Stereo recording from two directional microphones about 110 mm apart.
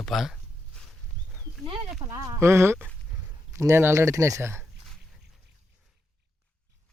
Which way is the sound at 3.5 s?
25° right (ahead or behind).